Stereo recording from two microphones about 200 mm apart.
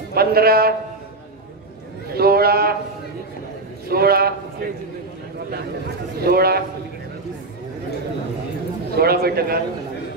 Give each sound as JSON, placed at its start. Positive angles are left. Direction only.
{"t": 0.1, "sound": "a man's voice", "side_deg": -50}
{"t": 2.1, "sound": "speech", "side_deg": -50}
{"t": 3.9, "sound": "a man's voice", "side_deg": -50}
{"t": 6.2, "sound": "a man's voice", "side_deg": -50}
{"t": 8.9, "sound": "a man's voice", "side_deg": -50}